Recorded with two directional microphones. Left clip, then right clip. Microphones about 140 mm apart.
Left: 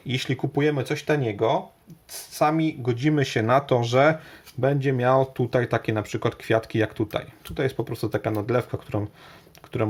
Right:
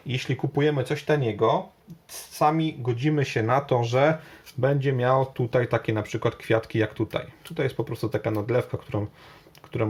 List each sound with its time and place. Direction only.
0.1 s speech: 20° left (ahead or behind)